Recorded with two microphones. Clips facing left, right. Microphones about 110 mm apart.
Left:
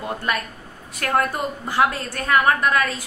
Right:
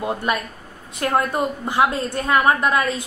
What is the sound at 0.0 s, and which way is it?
A woman's voice, 20° right (ahead or behind).